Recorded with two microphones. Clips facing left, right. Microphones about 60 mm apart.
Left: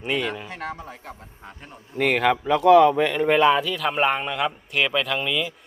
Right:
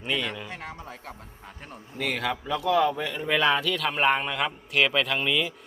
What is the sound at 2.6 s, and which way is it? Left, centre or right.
Speech, left.